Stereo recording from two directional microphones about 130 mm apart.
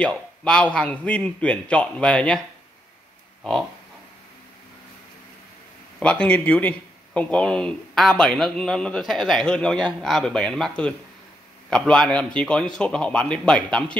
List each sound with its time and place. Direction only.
0.0 s a man's voice: 10° left (ahead or behind)
5.9 s a man's voice: 10° left (ahead or behind)